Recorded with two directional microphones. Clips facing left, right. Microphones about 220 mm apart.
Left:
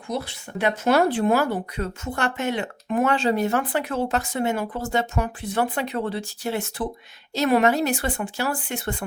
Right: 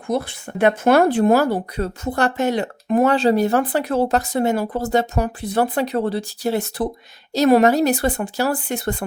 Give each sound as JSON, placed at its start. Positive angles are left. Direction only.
{"t": 0.1, "sound": "speech", "side_deg": -50}